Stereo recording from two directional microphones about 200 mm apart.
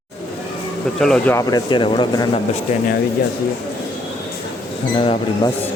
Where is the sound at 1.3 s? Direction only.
20° left (ahead or behind).